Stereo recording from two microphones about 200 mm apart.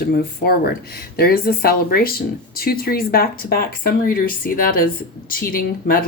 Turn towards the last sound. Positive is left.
turn(degrees=45)  # may be behind; listen again after turning